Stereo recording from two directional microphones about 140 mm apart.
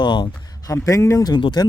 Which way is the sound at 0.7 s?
20° left (ahead or behind).